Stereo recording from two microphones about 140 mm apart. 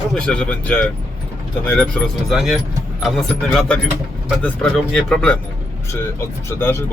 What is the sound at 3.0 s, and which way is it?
Speech, centre (ahead or behind).